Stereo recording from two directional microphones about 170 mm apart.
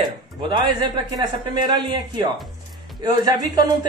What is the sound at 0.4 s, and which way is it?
A man's voice, 30° right (ahead or behind).